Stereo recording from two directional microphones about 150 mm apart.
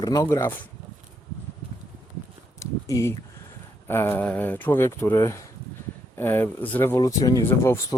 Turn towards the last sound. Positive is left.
turn(degrees=20)  # may be behind; listen again after turning